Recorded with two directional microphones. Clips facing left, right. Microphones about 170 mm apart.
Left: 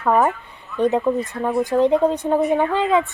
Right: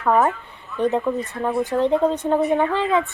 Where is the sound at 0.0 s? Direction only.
10° left (ahead or behind).